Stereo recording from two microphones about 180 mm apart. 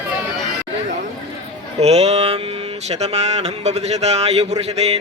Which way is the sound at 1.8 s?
35° right (ahead or behind).